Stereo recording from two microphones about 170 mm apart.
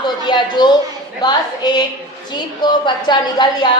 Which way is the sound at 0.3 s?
25° left (ahead or behind).